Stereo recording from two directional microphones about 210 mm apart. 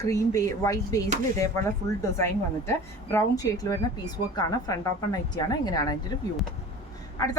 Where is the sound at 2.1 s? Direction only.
10° left (ahead or behind).